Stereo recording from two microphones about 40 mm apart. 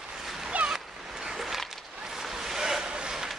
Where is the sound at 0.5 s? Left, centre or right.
Right.